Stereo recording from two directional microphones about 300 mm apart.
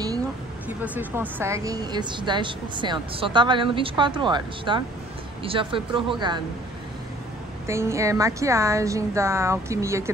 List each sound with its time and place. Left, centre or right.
0.8 s a woman's voice: centre
7.6 s a woman's voice: centre